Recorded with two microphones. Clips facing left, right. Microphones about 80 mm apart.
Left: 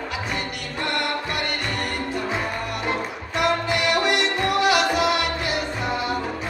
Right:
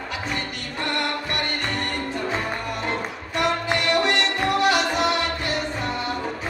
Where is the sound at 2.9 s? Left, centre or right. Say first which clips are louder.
Left 1 dB; centre.